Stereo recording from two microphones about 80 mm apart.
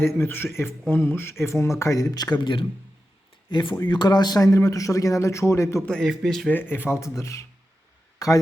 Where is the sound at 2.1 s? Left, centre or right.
Left.